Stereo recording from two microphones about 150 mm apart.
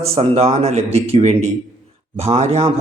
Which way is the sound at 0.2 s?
40° right (ahead or behind).